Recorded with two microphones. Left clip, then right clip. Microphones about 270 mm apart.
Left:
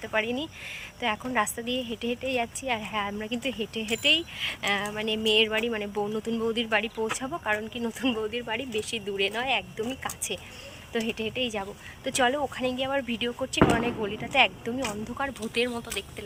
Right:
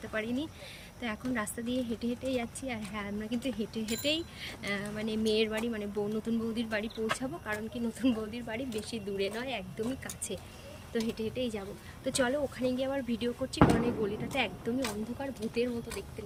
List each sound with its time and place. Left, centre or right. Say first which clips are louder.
0.1 s speech: left 7 dB; centre
1.6 s a woman's voice: left 4 dB; centre
2.0 s speech: left 6 dB; centre